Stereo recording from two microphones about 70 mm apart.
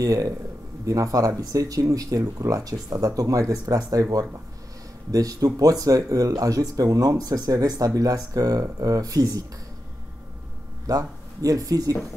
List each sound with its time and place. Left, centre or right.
0.0 s speech: right
10.9 s speech: right